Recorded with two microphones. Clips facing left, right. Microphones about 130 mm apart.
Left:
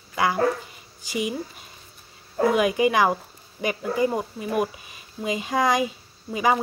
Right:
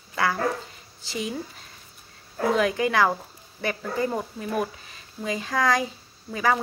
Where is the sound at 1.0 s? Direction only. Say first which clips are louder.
Left 3 dB; 15° left (ahead or behind).